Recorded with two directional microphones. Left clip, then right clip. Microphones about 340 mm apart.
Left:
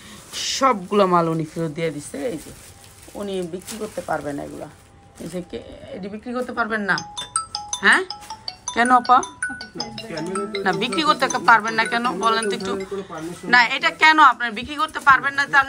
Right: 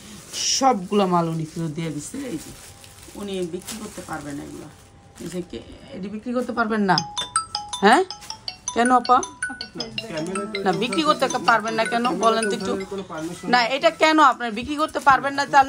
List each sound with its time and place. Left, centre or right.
0.3 s speech: centre
6.3 s a woman's voice: centre
7.0 s music: centre
7.8 s a woman's voice: centre
8.1 s music: centre
8.7 s a woman's voice: centre
9.2 s speech: centre
10.6 s a woman's voice: centre